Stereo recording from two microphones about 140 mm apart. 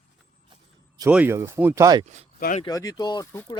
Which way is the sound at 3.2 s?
20° left (ahead or behind).